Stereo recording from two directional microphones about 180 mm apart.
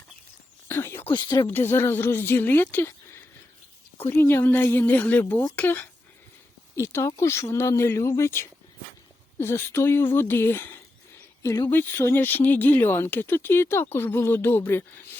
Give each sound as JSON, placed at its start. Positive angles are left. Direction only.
{"t": 0.7, "sound": "speech", "side_deg": 10}
{"t": 1.1, "sound": "speech", "side_deg": 25}
{"t": 1.5, "sound": "speech", "side_deg": 10}